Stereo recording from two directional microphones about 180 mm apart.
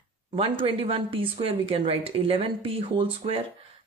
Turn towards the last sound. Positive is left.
turn(degrees=-30)  # may be behind; listen again after turning